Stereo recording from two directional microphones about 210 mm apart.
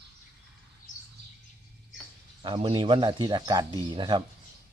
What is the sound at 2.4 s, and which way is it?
Speech, 25° right (ahead or behind).